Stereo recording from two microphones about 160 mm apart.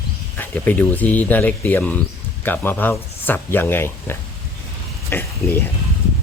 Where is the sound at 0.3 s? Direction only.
10° left (ahead or behind).